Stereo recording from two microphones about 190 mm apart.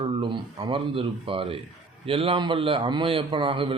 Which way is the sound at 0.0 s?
25° right (ahead or behind).